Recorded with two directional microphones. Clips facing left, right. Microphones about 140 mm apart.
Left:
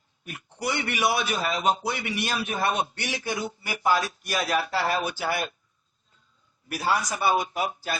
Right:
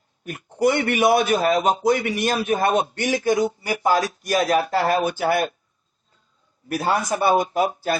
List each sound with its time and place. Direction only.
0.3 s speech: 45° right (ahead or behind)
6.7 s speech: 50° right (ahead or behind)